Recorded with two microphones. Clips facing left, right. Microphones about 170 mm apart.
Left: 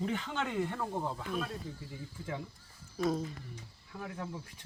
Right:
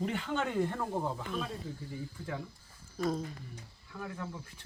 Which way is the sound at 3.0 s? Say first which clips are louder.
Left 1 dB; centre (ahead or behind).